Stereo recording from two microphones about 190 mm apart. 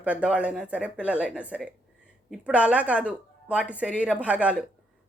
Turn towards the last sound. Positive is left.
turn(degrees=-5)  # may be behind; listen again after turning